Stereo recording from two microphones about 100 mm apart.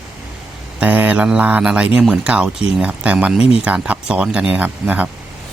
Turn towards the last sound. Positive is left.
turn(degrees=-15)  # may be behind; listen again after turning